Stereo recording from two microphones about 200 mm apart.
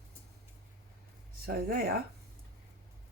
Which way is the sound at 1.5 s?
50° right (ahead or behind).